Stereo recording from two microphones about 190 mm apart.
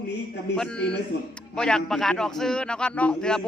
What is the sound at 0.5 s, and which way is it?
A man's voice, 5° left (ahead or behind).